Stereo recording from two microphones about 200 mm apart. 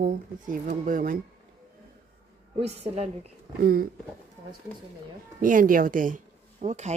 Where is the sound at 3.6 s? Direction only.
50° right (ahead or behind).